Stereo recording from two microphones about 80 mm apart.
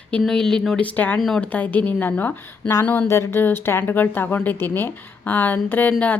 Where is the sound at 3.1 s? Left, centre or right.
Left.